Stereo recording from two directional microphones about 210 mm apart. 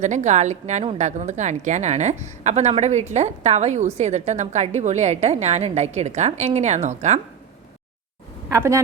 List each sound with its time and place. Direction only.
0.0 s a woman's voice: 35° right (ahead or behind)
8.5 s speech: 15° right (ahead or behind)